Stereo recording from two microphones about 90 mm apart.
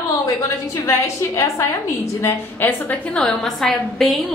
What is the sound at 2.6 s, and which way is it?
Speech, 20° left (ahead or behind).